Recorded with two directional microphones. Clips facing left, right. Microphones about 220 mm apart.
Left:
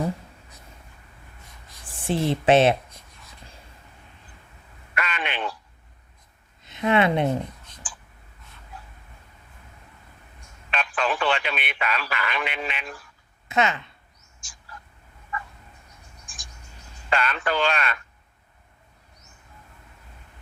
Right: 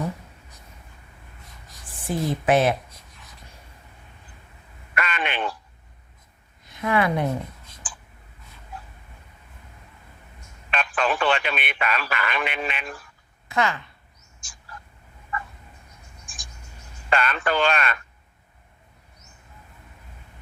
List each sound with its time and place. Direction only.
2.0 s speech: 25° left (ahead or behind)
4.9 s a sound: 50° right (ahead or behind)
6.7 s speech: 25° left (ahead or behind)
7.8 s a sound: 50° right (ahead or behind)
10.7 s speech: 50° right (ahead or behind)
13.5 s speech: 20° left (ahead or behind)
14.4 s bird: 50° right (ahead or behind)
17.1 s speech: 50° right (ahead or behind)